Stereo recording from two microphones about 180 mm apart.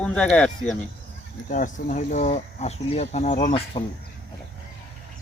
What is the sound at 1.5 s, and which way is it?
Speech, 45° left (ahead or behind).